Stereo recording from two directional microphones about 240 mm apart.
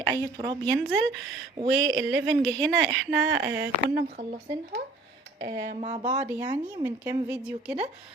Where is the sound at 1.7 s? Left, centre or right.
Right.